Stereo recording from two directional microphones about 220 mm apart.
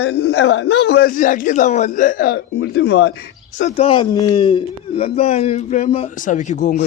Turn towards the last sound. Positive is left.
turn(degrees=35)  # may be behind; listen again after turning